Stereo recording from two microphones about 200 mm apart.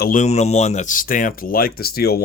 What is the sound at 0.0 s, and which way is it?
Speech, 40° left (ahead or behind).